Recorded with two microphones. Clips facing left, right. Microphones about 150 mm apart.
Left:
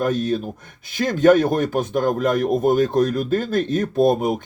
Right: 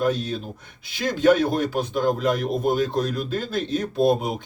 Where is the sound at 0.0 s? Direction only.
50° left (ahead or behind).